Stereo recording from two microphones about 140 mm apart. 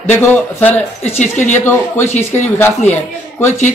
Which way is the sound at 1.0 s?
55° left (ahead or behind).